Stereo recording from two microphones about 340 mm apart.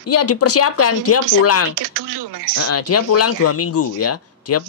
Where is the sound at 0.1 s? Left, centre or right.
Left.